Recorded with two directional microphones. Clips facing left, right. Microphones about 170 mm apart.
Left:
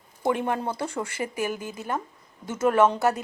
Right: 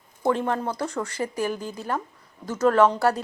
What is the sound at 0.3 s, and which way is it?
Speech, 15° left (ahead or behind).